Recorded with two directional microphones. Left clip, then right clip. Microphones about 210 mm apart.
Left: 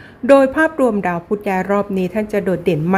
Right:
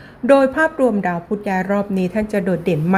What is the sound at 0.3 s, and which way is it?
Speech, 10° left (ahead or behind).